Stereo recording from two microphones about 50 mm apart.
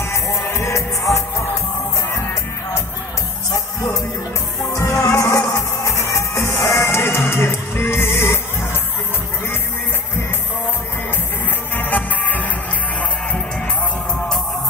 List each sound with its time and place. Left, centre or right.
0.0 s music: left
4.6 s music: left
11.7 s music: left